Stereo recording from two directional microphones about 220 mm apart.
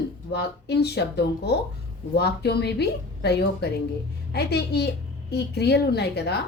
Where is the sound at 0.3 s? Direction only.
50° left (ahead or behind).